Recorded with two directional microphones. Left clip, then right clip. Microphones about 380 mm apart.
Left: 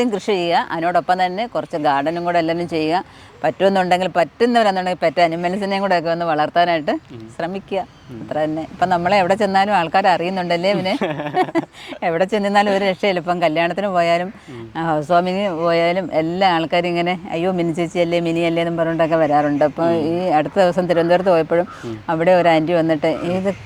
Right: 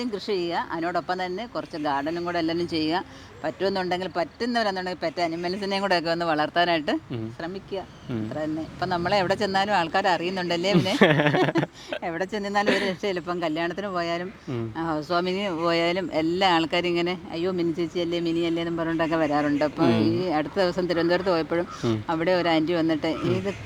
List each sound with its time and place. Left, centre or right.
0.1 s speech: left
7.4 s speech: left
11.0 s speech: right
12.0 s speech: left